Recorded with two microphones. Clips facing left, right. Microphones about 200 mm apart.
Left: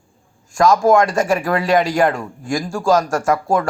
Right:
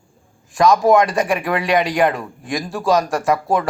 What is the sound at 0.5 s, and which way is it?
Speech, centre (ahead or behind).